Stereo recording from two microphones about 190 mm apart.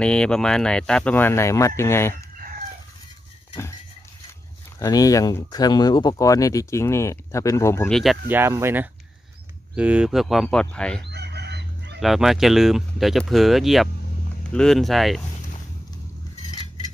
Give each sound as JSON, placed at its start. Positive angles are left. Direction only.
{"t": 0.0, "sound": "speech", "side_deg": 5}
{"t": 4.7, "sound": "speech", "side_deg": 20}
{"t": 7.9, "sound": "speech", "side_deg": 0}
{"t": 8.4, "sound": "speech", "side_deg": -15}
{"t": 11.1, "sound": "chicken", "side_deg": -60}
{"t": 12.0, "sound": "speech", "side_deg": 0}
{"t": 16.4, "sound": "a sound", "side_deg": 20}